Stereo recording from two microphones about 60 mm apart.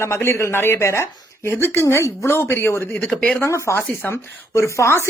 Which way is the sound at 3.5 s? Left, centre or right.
Left.